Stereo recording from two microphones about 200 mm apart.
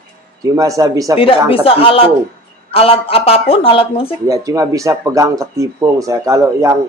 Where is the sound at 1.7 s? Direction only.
30° left (ahead or behind).